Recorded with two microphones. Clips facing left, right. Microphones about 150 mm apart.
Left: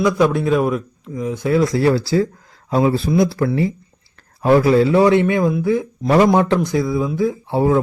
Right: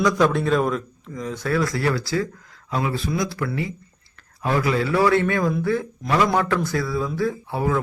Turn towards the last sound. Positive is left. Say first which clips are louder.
# left 7 dB
turn(degrees=30)  # may be behind; listen again after turning